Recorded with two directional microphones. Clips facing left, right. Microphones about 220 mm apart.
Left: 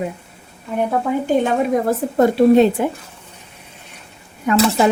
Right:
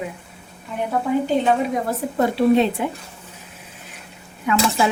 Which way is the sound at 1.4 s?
45° left (ahead or behind).